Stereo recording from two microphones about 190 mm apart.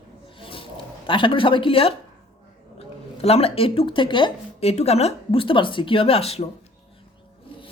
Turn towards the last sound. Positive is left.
turn(degrees=30)  # may be behind; listen again after turning